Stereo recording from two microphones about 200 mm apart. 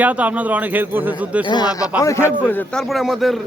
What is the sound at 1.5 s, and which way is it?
A man's voice, 20° left (ahead or behind).